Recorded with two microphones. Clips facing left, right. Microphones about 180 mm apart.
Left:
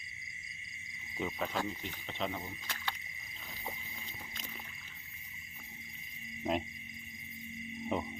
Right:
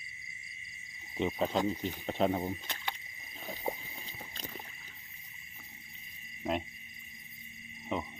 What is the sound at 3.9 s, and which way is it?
Boat, 35° right (ahead or behind).